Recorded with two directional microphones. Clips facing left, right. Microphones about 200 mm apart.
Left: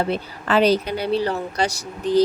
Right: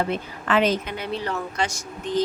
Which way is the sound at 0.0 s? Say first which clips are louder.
Left 2 dB; 35° left (ahead or behind).